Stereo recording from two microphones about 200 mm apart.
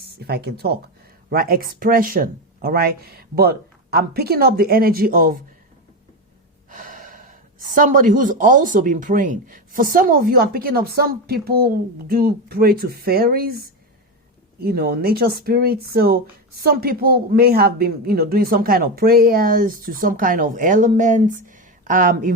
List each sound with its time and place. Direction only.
0.0 s speech: 50° right (ahead or behind)
6.7 s gasp: 40° right (ahead or behind)
7.8 s speech: 40° right (ahead or behind)